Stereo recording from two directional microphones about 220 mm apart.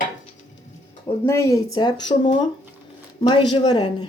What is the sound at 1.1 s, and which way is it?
Speech, 15° left (ahead or behind).